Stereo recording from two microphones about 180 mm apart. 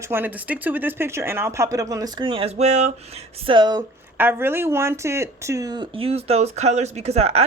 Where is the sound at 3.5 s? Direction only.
25° right (ahead or behind).